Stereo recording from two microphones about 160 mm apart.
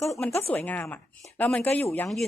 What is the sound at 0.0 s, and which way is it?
A woman's voice, 20° left (ahead or behind).